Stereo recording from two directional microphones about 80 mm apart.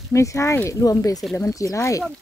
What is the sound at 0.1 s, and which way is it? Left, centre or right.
Speech, left.